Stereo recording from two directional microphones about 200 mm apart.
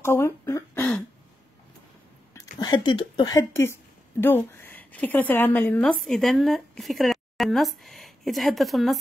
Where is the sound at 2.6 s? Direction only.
20° left (ahead or behind).